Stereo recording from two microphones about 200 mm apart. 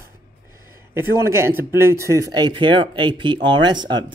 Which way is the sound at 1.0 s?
10° right (ahead or behind).